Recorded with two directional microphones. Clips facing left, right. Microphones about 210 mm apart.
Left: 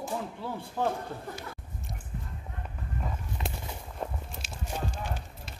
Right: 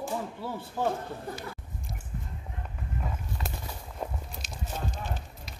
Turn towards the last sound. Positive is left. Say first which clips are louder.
# even
turn(degrees=10)  # may be behind; listen again after turning